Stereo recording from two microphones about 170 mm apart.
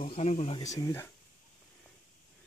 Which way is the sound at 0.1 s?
40° left (ahead or behind).